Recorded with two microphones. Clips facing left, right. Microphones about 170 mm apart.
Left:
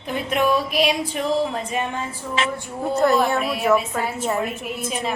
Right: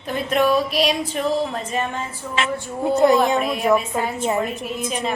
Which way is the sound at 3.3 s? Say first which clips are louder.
Right 1 dB; 5° left (ahead or behind).